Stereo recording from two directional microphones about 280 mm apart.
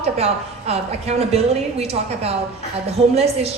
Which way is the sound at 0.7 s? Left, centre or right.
Right.